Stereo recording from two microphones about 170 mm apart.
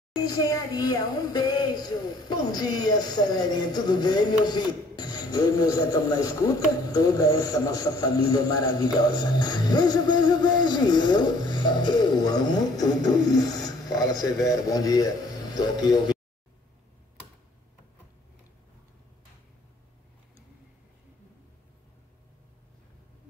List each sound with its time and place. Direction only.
0.1 s speech: 20° left (ahead or behind)